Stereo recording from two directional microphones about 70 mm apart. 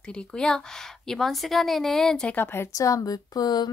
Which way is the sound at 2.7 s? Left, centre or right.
Left.